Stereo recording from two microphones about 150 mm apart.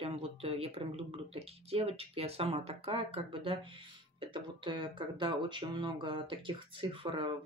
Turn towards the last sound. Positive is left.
turn(degrees=-35)  # may be behind; listen again after turning